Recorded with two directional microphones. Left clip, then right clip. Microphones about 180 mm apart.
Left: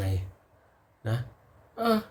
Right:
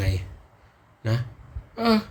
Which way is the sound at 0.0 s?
15° left (ahead or behind).